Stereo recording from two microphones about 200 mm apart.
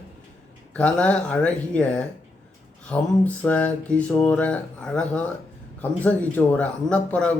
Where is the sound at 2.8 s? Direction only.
5° left (ahead or behind).